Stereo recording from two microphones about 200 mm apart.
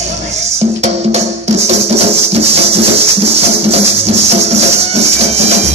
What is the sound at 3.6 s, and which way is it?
Music, 30° right (ahead or behind).